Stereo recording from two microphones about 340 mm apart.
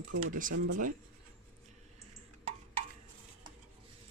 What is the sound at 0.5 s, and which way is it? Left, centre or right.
Speech, right.